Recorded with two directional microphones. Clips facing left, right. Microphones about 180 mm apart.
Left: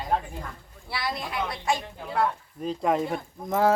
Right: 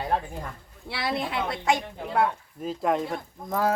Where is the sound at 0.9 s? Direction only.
25° right (ahead or behind).